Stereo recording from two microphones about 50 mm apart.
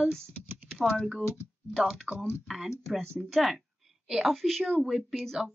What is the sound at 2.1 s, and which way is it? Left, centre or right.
Speech, left.